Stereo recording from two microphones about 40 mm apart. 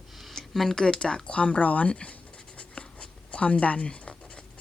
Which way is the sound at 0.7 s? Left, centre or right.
Centre.